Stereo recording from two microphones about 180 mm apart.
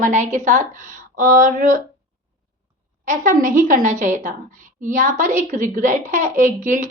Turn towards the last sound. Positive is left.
turn(degrees=-45)  # may be behind; listen again after turning